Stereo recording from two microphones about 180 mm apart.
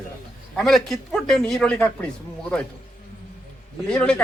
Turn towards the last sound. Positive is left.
turn(degrees=5)  # may be behind; listen again after turning